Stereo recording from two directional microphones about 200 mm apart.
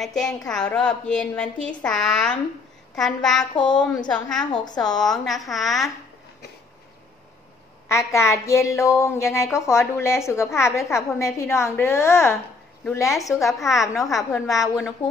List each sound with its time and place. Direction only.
0.0 s a woman's voice: centre (ahead or behind)
4.5 s a woman's voice: 20° left (ahead or behind)
4.8 s a woman's voice: 5° left (ahead or behind)
8.1 s a woman's voice: 15° left (ahead or behind)
13.4 s a woman's voice: centre (ahead or behind)